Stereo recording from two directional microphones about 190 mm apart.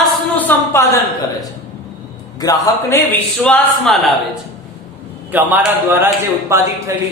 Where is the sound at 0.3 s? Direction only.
10° left (ahead or behind).